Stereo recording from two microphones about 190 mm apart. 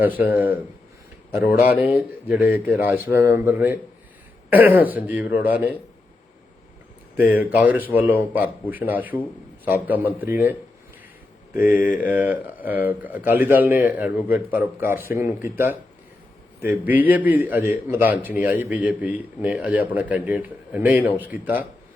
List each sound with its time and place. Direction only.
0.0 s a man's voice: 10° right (ahead or behind)
7.2 s a man's voice: 10° right (ahead or behind)
11.5 s a man's voice: 10° right (ahead or behind)
11.8 s mantra: 45° left (ahead or behind)
12.0 s a man's voice: 10° right (ahead or behind)